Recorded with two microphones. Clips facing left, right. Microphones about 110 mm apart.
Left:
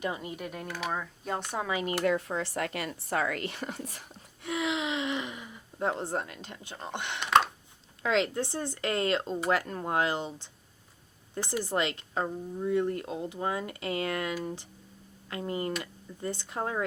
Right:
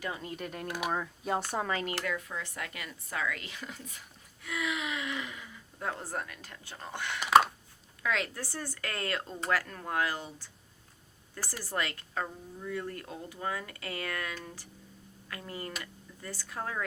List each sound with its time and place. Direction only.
0.0 s speech: 15° left (ahead or behind)
0.7 s speech: 15° right (ahead or behind)
0.9 s speech: 5° right (ahead or behind)
1.7 s speech: 15° left (ahead or behind)
2.0 s speech: 35° left (ahead or behind)
2.6 s speech: 55° left (ahead or behind)
4.4 s speech: 25° left (ahead or behind)
7.2 s a sound: 5° right (ahead or behind)
8.0 s speech: 25° left (ahead or behind)